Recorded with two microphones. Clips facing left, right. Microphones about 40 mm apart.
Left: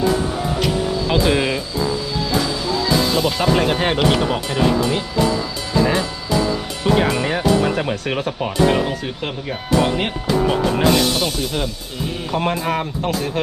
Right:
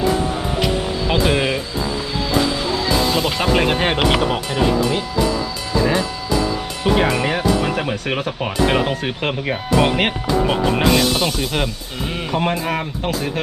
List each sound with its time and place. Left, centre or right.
0.6 s music: right
1.3 s speech: centre
2.1 s music: right
4.4 s music: centre
6.8 s speech: centre
8.4 s speech: right
12.3 s speech: centre